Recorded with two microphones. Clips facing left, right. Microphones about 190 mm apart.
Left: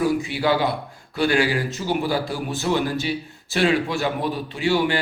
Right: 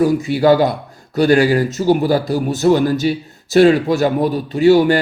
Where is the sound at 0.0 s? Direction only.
45° right (ahead or behind).